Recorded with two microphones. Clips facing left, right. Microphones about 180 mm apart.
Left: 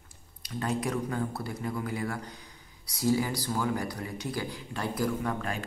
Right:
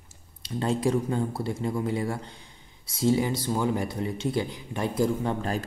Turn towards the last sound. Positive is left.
turn(degrees=-30)  # may be behind; listen again after turning